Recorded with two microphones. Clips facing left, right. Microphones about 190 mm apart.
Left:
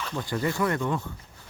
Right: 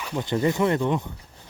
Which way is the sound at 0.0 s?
20° right (ahead or behind).